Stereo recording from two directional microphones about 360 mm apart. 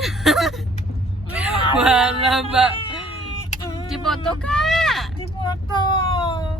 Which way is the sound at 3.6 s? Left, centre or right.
Centre.